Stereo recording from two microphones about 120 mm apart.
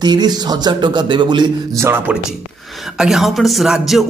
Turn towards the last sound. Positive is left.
turn(degrees=0)  # may be behind; listen again after turning